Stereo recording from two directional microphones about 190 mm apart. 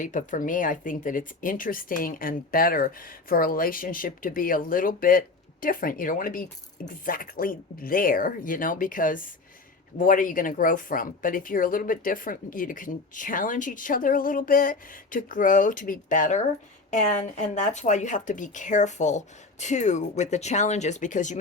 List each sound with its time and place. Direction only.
0.0 s speech: 40° left (ahead or behind)